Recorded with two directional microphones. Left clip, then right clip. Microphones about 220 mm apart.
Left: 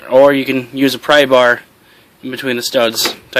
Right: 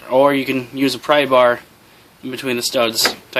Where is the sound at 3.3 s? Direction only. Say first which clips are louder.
Left 6 dB; 20° left (ahead or behind).